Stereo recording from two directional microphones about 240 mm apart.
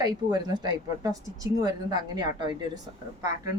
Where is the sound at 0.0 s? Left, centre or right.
Centre.